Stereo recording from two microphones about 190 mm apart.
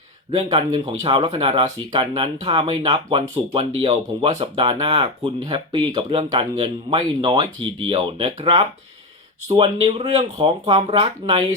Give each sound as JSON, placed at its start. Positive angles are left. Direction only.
{"t": 0.3, "sound": "speech", "side_deg": -25}